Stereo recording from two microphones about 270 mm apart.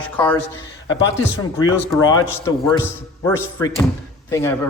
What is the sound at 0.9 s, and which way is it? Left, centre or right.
A man's voice, centre.